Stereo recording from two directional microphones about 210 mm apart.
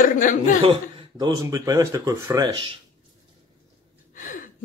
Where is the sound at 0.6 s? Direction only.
25° right (ahead or behind).